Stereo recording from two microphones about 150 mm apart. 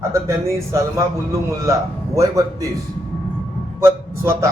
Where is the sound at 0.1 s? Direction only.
20° right (ahead or behind).